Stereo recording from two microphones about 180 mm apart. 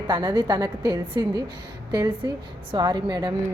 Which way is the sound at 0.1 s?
25° right (ahead or behind).